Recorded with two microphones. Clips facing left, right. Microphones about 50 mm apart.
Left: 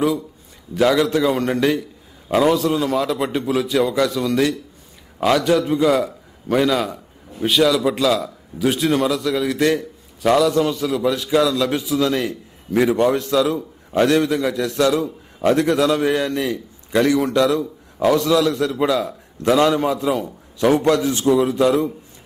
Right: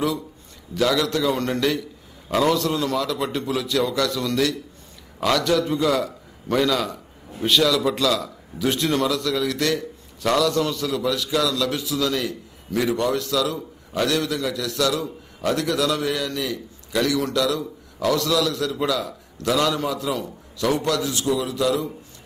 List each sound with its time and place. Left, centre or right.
0.7 s a man's voice: left